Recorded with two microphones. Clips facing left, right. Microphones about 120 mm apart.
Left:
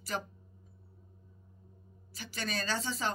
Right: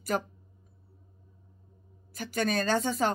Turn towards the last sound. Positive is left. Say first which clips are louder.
# right 8 dB
turn(degrees=-50)  # may be behind; listen again after turning